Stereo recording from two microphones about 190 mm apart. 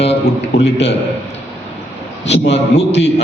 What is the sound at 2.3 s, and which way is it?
Speech, 70° left (ahead or behind).